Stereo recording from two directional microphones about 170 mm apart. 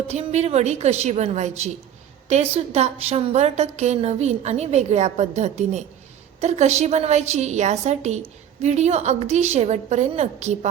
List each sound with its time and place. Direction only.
0.1 s a woman's voice: 40° right (ahead or behind)